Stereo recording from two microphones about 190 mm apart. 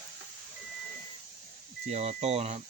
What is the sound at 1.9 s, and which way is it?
Speech, 35° right (ahead or behind).